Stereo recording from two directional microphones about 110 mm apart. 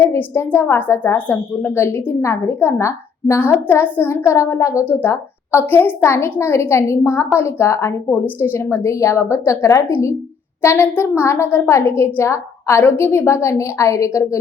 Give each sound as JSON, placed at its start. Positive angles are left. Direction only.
{"t": 0.0, "sound": "a woman's voice", "side_deg": 25}